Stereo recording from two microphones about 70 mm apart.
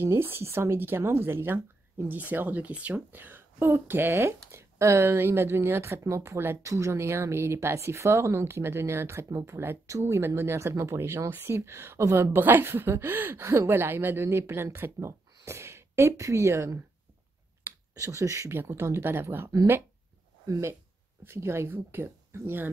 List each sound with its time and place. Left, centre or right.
0.0 s speech: right
9.8 s speech: right
17.6 s finger snapping: right
18.0 s speech: right
18.5 s speech: right
21.2 s speech: right